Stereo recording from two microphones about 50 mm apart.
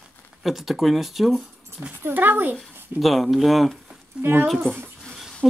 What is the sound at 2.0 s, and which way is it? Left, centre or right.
Speech, right.